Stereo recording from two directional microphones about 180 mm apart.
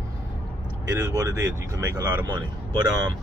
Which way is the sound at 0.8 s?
15° right (ahead or behind).